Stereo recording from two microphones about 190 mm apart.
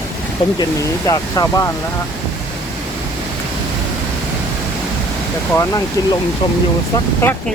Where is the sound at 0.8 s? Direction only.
20° left (ahead or behind).